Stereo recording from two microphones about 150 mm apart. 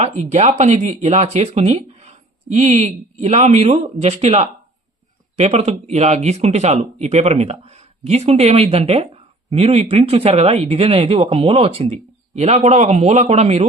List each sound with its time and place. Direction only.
0.0 s speech: 50° right (ahead or behind)